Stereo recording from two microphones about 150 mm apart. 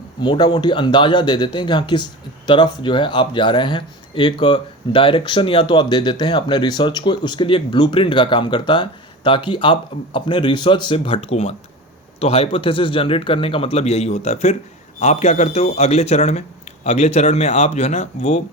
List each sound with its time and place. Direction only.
0.2 s speech: 30° left (ahead or behind); by 18.4 s 45° left (ahead or behind)